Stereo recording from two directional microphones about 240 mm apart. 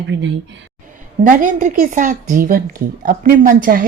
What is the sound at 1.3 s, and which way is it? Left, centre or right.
Speech, right.